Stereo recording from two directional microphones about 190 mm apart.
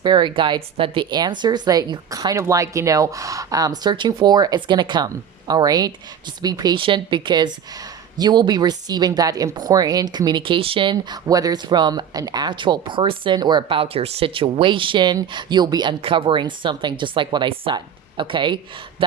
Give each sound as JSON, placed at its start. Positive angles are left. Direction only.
{"t": 0.0, "sound": "speech", "side_deg": -25}